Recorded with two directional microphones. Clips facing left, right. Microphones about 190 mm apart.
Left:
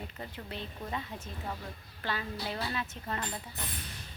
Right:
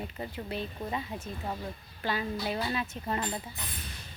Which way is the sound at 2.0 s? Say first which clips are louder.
Right 4 dB; 15° right (ahead or behind).